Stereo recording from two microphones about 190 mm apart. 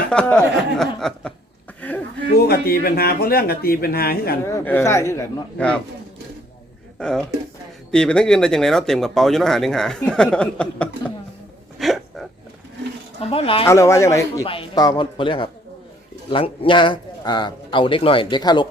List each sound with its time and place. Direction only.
0.1 s speech: 5° left (ahead or behind)
2.3 s speech: 55° left (ahead or behind)
4.4 s speech: 10° left (ahead or behind)
7.0 s speech: 5° left (ahead or behind)
11.8 s a sound: centre (ahead or behind)
13.3 s speech: 30° left (ahead or behind)
13.7 s speech: 15° left (ahead or behind)